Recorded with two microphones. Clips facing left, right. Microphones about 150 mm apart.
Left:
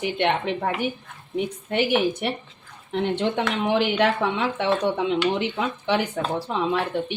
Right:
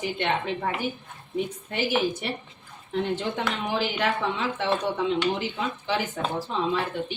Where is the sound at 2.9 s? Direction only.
65° left (ahead or behind).